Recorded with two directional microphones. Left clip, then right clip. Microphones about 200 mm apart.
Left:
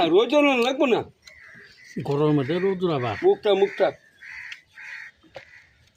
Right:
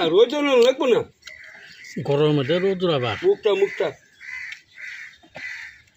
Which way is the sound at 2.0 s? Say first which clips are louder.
Right 3 dB; 5° right (ahead or behind).